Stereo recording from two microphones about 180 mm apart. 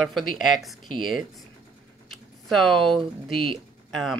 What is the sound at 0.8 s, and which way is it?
Speech, 25° right (ahead or behind).